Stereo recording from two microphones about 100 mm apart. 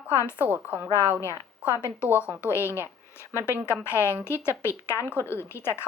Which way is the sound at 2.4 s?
25° left (ahead or behind).